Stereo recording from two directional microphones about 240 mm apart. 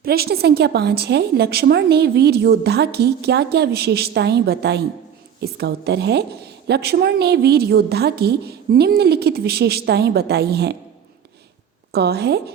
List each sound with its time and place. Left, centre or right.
0.0 s a woman's voice: right
11.9 s a woman's voice: right